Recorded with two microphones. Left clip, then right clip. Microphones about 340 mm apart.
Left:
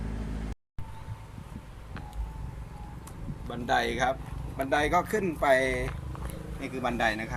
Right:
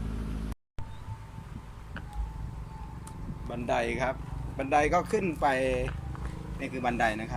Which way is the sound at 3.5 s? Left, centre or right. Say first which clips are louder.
Left 2 dB; centre.